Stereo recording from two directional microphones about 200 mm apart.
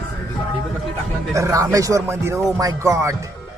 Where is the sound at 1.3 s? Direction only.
15° right (ahead or behind).